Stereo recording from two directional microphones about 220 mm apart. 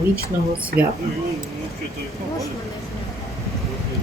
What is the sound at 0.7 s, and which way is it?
Speech, 45° right (ahead or behind).